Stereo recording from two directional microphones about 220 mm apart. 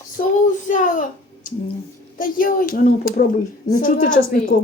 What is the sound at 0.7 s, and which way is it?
Speech, 35° left (ahead or behind).